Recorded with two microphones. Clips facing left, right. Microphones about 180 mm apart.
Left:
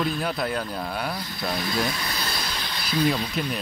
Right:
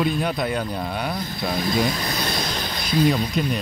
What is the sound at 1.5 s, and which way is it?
Speech, 15° right (ahead or behind).